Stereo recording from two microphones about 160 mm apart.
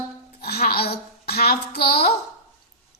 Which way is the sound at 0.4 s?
75° left (ahead or behind).